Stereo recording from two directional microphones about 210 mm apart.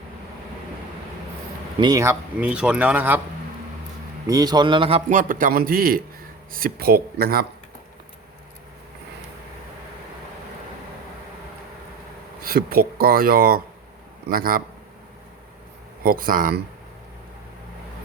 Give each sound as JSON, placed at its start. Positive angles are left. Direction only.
{"t": 1.8, "sound": "speech", "side_deg": -15}
{"t": 4.3, "sound": "a man's voice", "side_deg": -15}
{"t": 12.4, "sound": "speech", "side_deg": -45}
{"t": 16.0, "sound": "speech", "side_deg": -40}